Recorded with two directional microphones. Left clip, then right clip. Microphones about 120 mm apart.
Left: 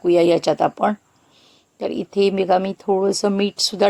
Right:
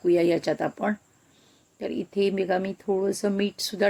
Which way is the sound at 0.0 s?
20° left (ahead or behind).